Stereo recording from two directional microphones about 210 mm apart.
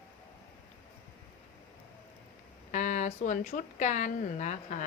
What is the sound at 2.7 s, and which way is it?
Speech, 35° left (ahead or behind).